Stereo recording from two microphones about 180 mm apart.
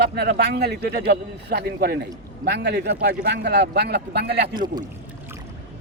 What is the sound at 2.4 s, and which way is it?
A man's voice, 70° right (ahead or behind).